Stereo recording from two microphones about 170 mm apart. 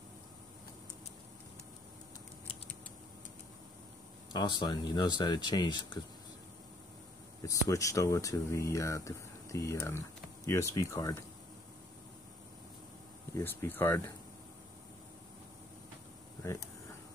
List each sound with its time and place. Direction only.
4.3 s speech: 25° left (ahead or behind)
7.4 s speech: 20° left (ahead or behind)
13.3 s speech: 15° left (ahead or behind)